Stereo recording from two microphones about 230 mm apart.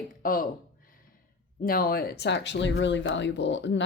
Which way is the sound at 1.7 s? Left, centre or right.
Left.